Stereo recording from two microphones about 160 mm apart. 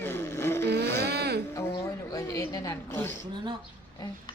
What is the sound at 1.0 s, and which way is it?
Speech, 90° right.